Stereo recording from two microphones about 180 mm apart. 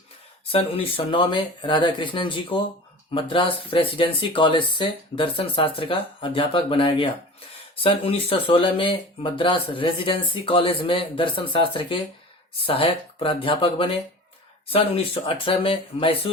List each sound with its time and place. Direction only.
0.5 s speech: 30° left (ahead or behind)